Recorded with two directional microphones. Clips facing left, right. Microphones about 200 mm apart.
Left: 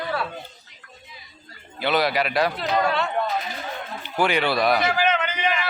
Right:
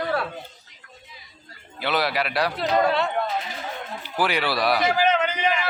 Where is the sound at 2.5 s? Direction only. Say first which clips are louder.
Right 2 dB; 35° right (ahead or behind).